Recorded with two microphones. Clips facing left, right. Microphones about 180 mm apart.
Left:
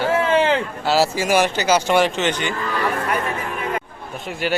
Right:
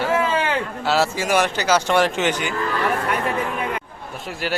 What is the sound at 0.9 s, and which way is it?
A man's voice, centre (ahead or behind).